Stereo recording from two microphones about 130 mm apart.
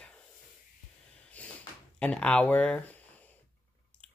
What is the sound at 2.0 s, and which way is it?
Speech, 10° left (ahead or behind).